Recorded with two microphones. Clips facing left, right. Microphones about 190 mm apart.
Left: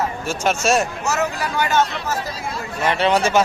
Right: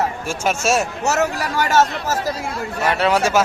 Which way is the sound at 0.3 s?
5° right (ahead or behind).